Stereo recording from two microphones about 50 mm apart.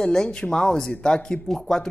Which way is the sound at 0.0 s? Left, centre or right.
Centre.